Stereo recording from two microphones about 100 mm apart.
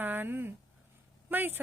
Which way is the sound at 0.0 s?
20° right (ahead or behind).